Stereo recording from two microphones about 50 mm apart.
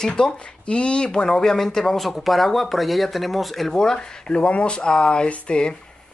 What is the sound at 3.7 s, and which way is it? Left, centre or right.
Speech, centre.